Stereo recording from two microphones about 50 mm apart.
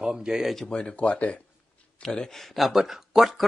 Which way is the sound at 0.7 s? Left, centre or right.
Left.